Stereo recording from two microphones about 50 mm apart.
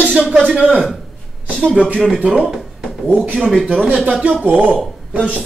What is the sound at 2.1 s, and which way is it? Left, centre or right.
Speech, right.